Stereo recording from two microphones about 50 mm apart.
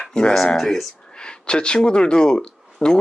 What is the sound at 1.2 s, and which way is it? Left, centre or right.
Speech, centre.